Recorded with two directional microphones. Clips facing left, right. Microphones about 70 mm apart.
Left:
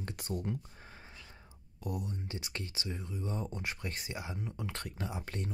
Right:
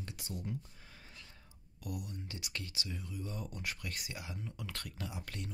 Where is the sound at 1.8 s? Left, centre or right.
Left.